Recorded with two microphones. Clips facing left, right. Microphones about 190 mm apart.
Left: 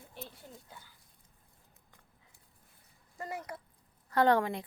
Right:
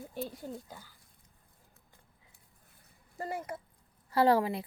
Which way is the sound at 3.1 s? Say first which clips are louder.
Right 3 dB; 30° right (ahead or behind).